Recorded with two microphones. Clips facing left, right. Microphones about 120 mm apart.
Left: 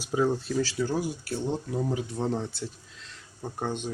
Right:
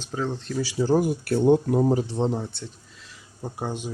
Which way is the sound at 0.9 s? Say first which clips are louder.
Right 8 dB; 55° right (ahead or behind).